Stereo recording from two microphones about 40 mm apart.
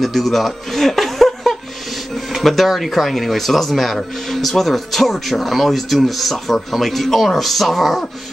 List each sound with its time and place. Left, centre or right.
0.0 s chuckle: centre
2.3 s speech: centre